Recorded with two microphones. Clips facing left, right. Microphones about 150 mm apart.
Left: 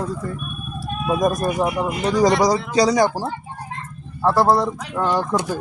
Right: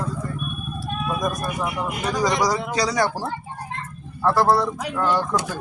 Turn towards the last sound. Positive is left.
turn(degrees=20)  # may be behind; listen again after turning